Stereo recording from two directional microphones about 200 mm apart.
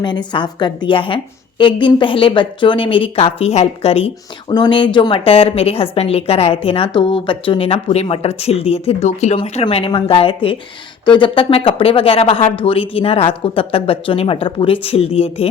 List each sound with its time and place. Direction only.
0.0 s a woman's voice: 25° left (ahead or behind)